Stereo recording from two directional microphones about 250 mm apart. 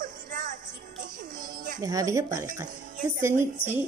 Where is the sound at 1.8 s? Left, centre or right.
Centre.